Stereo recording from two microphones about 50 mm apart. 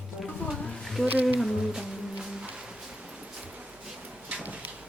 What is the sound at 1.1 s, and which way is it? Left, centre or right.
Speech, right.